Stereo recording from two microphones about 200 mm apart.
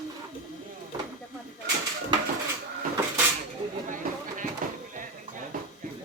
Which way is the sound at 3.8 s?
40° right (ahead or behind).